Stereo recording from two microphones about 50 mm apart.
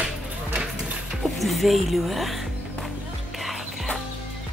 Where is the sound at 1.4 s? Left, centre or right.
Centre.